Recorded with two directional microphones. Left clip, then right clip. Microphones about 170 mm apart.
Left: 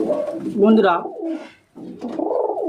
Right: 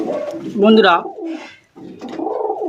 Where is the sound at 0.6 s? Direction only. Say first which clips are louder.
Right 4 dB; centre (ahead or behind).